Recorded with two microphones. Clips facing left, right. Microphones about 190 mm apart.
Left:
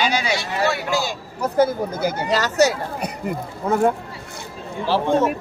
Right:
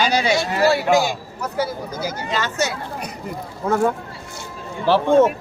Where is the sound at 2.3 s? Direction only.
40° left (ahead or behind).